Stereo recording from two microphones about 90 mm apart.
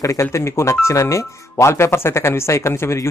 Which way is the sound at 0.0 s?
35° left (ahead or behind).